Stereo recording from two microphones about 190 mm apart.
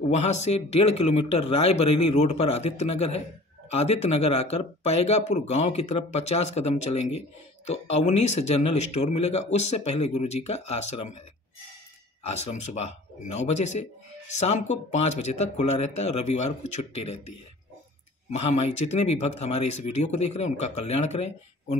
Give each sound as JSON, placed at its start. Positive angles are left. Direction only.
{"t": 0.0, "sound": "speech", "side_deg": 35}
{"t": 12.3, "sound": "speech", "side_deg": 35}
{"t": 18.3, "sound": "speech", "side_deg": 35}